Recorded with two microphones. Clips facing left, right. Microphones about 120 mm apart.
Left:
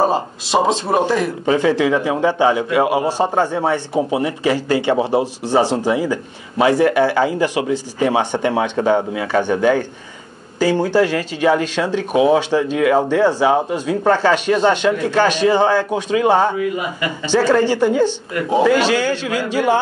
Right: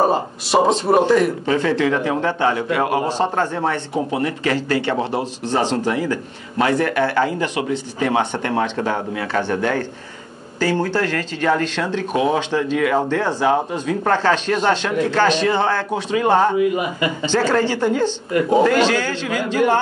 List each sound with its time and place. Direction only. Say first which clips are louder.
0.5 s speech: right 1 dB; centre (ahead or behind)
1.4 s a man's voice: left 3 dB; 15° left (ahead or behind)
16.5 s speech: right 3 dB; 25° right (ahead or behind)
17.3 s a man's voice: left 5 dB; 10° left (ahead or behind)